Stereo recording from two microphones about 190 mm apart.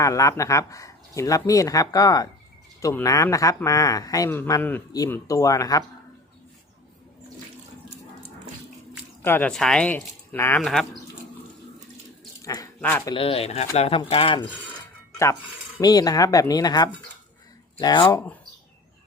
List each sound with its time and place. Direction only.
0.0 s speech: 15° left (ahead or behind)
9.2 s speech: 10° left (ahead or behind)
12.4 s a sound: 20° left (ahead or behind)
13.1 s speech: 30° left (ahead or behind)
15.8 s speech: 20° left (ahead or behind)